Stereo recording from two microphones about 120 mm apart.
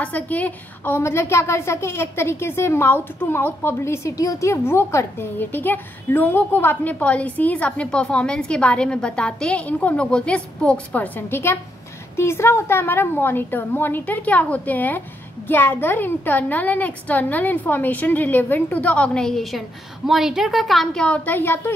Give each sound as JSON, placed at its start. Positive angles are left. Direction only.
{"t": 0.0, "sound": "a woman's voice", "side_deg": 10}